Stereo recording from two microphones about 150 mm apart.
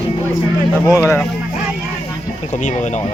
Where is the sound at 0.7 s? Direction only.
20° left (ahead or behind).